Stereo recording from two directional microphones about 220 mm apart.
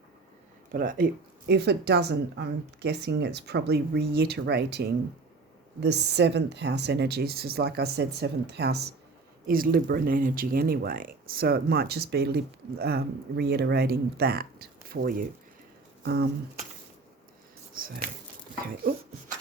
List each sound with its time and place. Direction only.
0.7 s speech: 40° right (ahead or behind)
17.7 s speech: 40° right (ahead or behind)